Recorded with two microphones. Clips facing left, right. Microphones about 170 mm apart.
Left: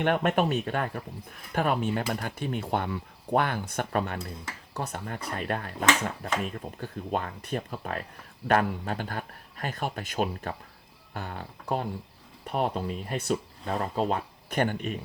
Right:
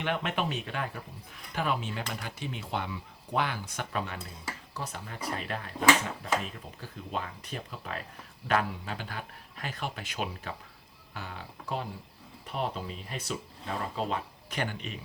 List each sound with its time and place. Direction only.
0.0 s speech: 50° left (ahead or behind)